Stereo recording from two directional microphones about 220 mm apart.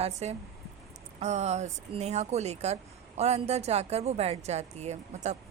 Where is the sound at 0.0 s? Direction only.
30° right (ahead or behind).